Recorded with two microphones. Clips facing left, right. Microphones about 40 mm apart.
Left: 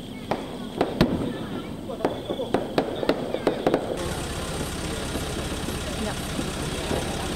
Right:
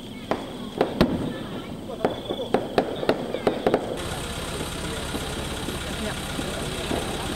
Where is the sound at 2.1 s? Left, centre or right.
Right.